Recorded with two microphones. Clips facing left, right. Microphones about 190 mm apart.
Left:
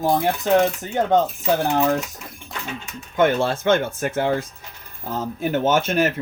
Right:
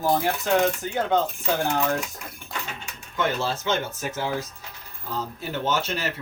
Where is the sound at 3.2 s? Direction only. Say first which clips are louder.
Left 7 dB; 55° left (ahead or behind).